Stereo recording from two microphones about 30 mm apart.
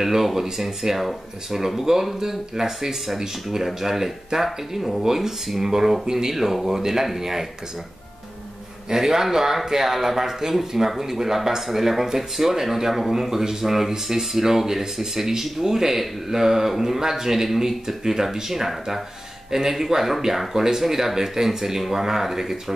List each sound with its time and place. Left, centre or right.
0.0 s speech: centre
5.0 s speech: centre
8.8 s speech: centre